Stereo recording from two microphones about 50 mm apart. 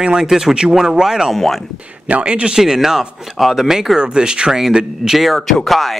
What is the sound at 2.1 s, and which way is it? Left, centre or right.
Speech, right.